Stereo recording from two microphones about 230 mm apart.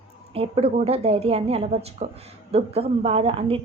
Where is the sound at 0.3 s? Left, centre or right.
Right.